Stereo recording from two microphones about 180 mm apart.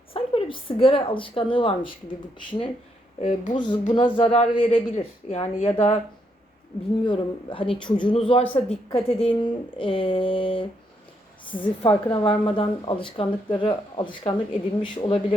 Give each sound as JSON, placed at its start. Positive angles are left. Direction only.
{"t": 0.1, "sound": "speech", "side_deg": 30}
{"t": 3.2, "sound": "speech", "side_deg": 45}
{"t": 3.5, "sound": "speech", "side_deg": 25}
{"t": 7.0, "sound": "speech", "side_deg": 30}